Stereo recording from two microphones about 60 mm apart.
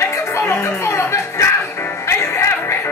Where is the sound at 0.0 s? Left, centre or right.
Left.